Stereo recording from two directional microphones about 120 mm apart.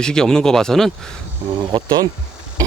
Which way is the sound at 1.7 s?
40° right (ahead or behind).